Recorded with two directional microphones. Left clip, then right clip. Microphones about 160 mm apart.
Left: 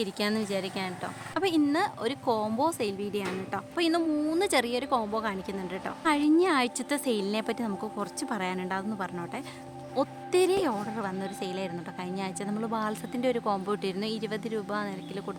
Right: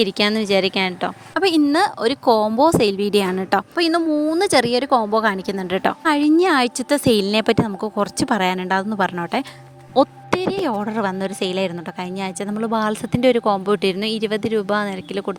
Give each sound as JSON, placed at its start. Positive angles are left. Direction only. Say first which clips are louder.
{"t": 0.0, "sound": "a woman's voice", "louder": "right 12 dB", "side_deg": -45}
{"t": 3.8, "sound": "a woman's voice", "louder": "right 4 dB", "side_deg": -45}